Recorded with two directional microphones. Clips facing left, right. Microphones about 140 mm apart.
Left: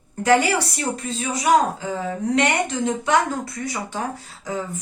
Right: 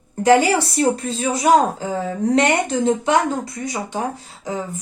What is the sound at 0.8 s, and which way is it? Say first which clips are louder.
A woman's voice: right 7 dB; 35° right (ahead or behind).